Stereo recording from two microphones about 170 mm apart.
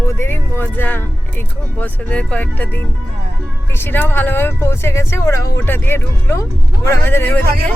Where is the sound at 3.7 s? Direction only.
10° left (ahead or behind).